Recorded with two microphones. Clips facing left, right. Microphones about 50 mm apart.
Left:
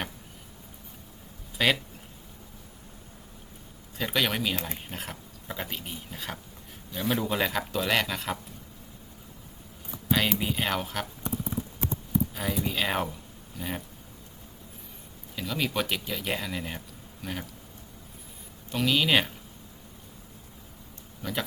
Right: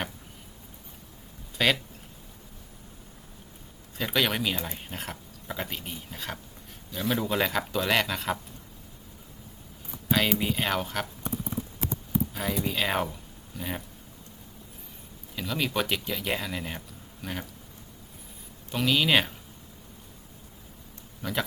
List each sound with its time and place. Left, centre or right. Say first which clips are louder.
1.5 s speech: even; centre
3.9 s speech: right 1 dB; centre
10.1 s speech: right 1 dB; centre
12.3 s speech: right 1 dB; centre
15.4 s speech: right 1 dB; centre
18.7 s speech: right 1 dB; centre
21.2 s a sound: right 2 dB; centre